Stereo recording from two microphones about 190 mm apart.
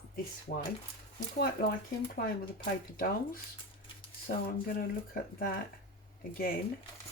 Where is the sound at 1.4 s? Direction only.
55° left (ahead or behind).